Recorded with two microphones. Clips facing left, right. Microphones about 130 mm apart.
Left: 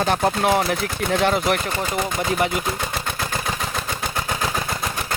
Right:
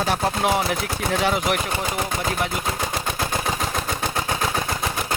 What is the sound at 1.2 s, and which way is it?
Speech, 5° right (ahead or behind).